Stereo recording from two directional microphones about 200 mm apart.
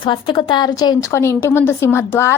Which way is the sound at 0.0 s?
25° left (ahead or behind).